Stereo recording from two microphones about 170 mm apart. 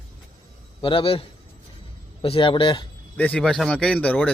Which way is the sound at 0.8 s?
30° left (ahead or behind).